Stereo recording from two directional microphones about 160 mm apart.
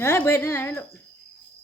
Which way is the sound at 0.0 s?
15° left (ahead or behind).